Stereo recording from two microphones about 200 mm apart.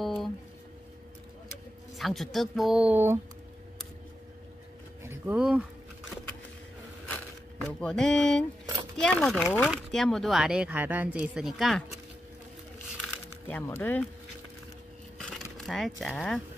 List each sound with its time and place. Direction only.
0.0 s music: centre (ahead or behind)
2.0 s speech: centre (ahead or behind)
5.0 s a sound: 10° right (ahead or behind)
7.8 s speech: 5° left (ahead or behind)
13.5 s speech: 10° left (ahead or behind)
15.1 s a sound: 5° left (ahead or behind)
15.5 s speech: centre (ahead or behind)